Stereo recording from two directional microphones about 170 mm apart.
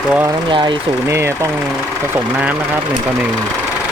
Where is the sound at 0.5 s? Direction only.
30° right (ahead or behind).